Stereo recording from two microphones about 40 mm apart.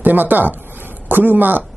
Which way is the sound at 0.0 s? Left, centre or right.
Right.